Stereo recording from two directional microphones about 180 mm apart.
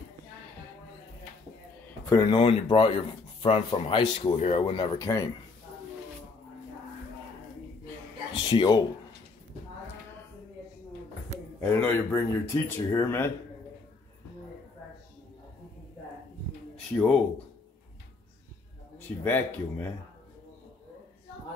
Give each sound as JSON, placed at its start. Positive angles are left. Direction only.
{"t": 2.0, "sound": "speech", "side_deg": 20}
{"t": 5.0, "sound": "speech", "side_deg": 20}
{"t": 8.5, "sound": "speech", "side_deg": 25}
{"t": 11.7, "sound": "speech", "side_deg": 10}
{"t": 16.7, "sound": "a sound", "side_deg": 5}
{"t": 18.9, "sound": "speech", "side_deg": 10}